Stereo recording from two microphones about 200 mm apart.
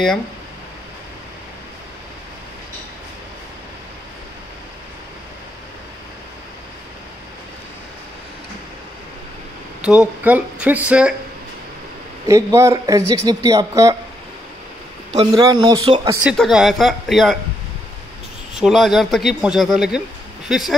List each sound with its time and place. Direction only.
9.8 s speech: 5° right (ahead or behind)
12.3 s speech: 15° right (ahead or behind)
15.3 s speech: 20° right (ahead or behind)
16.2 s speech: 5° right (ahead or behind)
18.6 s speech: centre (ahead or behind)